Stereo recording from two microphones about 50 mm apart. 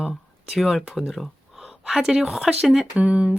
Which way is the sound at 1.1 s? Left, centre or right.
Centre.